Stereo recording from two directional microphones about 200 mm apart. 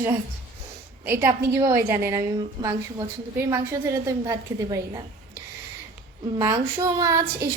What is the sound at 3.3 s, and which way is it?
A woman's voice, 15° right (ahead or behind).